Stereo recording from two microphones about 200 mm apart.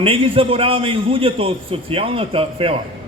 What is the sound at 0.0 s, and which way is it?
A man's voice, 25° right (ahead or behind).